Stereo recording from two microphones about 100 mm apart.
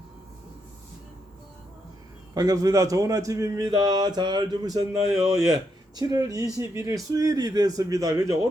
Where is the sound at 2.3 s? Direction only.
35° right (ahead or behind).